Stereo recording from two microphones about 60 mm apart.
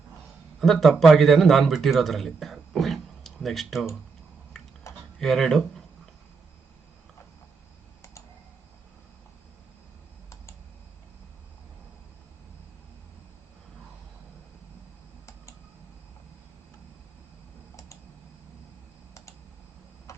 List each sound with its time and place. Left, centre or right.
0.6 s a man's voice: centre
4.5 s a sound: centre
5.2 s speech: centre
20.1 s tick-tock: left